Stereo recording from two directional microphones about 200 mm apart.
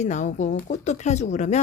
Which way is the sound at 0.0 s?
35° left (ahead or behind).